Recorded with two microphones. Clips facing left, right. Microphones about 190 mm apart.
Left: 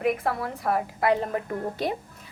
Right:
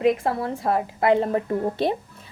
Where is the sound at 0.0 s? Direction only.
25° right (ahead or behind).